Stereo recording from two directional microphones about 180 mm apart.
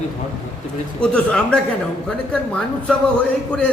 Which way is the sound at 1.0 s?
5° left (ahead or behind).